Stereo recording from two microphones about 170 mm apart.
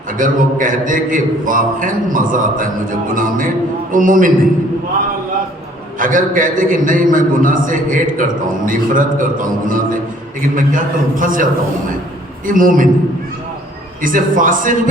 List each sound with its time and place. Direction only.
0.2 s a man's voice: 50° right (ahead or behind)
6.0 s a man's voice: 50° right (ahead or behind)
12.5 s a man's voice: 50° right (ahead or behind)
14.0 s a man's voice: 50° right (ahead or behind)